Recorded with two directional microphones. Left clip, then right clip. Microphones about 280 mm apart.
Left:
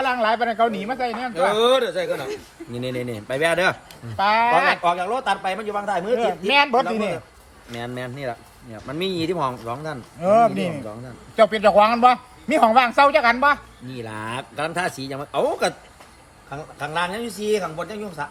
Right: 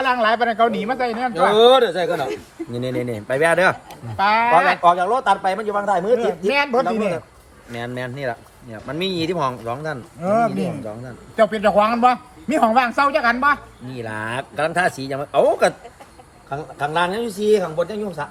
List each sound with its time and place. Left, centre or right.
0.0 s speech: centre
1.5 s a man's voice: centre
2.8 s speech: centre
4.8 s speech: centre
6.7 s speech: centre
10.2 s a man's voice: centre
13.9 s speech: centre
16.5 s speech: centre